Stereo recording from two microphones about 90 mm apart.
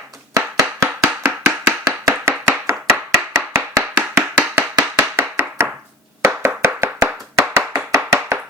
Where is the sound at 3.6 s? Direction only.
10° right (ahead or behind).